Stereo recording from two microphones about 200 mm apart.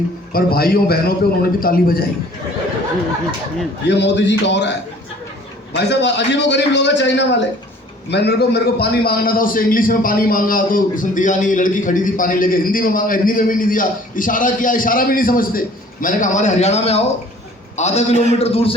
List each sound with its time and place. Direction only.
0.3 s a man's voice: 50° left (ahead or behind)
3.8 s a man's voice: 60° left (ahead or behind)
5.7 s a man's voice: 60° left (ahead or behind); by 18.7 s 30° left (ahead or behind)